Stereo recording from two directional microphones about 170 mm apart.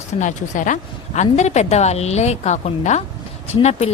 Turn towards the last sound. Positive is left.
turn(degrees=40)  # may be behind; listen again after turning